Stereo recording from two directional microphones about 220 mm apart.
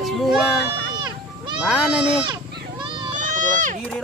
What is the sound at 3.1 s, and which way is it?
Run, 35° right (ahead or behind).